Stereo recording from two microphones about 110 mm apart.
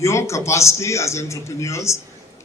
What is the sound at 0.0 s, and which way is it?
A man's voice, 25° left (ahead or behind).